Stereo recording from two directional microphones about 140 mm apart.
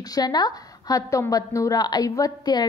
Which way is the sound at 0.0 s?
25° left (ahead or behind).